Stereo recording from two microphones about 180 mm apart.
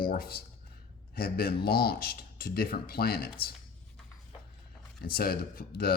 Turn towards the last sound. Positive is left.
turn(degrees=60)  # may be behind; listen again after turning